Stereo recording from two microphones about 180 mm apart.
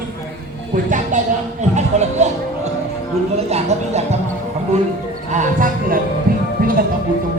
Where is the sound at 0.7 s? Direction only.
45° right (ahead or behind).